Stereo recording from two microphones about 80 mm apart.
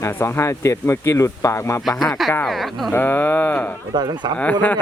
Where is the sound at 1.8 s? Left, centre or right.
Centre.